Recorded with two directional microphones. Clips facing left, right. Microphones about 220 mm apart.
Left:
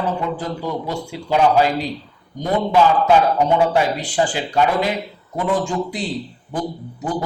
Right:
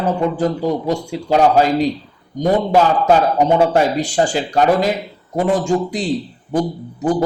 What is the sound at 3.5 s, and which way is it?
Speech, 45° right (ahead or behind).